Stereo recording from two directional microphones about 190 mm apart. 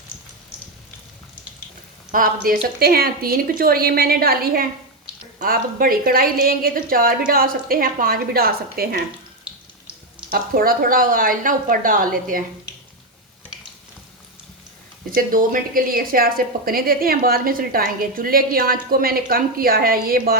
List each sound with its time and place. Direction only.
2.1 s a woman's voice: 45° right (ahead or behind)
10.3 s a woman's voice: 50° right (ahead or behind)
15.1 s a woman's voice: 45° right (ahead or behind)